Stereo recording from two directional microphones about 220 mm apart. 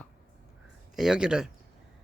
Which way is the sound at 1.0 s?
5° right (ahead or behind).